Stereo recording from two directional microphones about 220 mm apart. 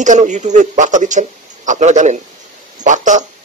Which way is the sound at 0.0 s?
35° right (ahead or behind).